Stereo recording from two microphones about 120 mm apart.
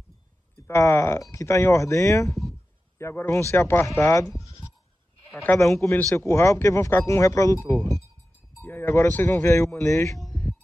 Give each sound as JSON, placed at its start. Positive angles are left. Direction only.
{"t": 0.7, "sound": "speech", "side_deg": 20}
{"t": 4.4, "sound": "bleat", "side_deg": 25}
{"t": 5.4, "sound": "speech", "side_deg": 15}
{"t": 8.6, "sound": "speech", "side_deg": 20}